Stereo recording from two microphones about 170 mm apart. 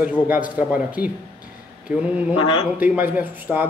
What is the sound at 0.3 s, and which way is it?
A man's voice, 10° right (ahead or behind).